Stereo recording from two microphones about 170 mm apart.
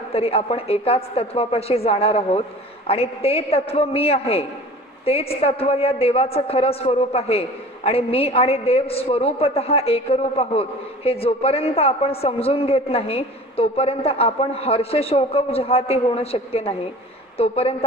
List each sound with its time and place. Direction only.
0.1 s a woman's voice: 35° left (ahead or behind)